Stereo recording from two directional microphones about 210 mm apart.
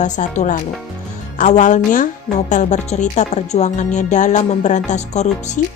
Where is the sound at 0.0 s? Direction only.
35° left (ahead or behind).